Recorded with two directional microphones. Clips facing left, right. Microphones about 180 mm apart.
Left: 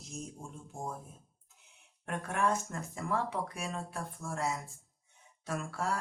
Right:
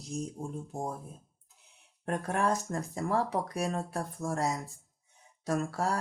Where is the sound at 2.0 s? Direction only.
35° right (ahead or behind).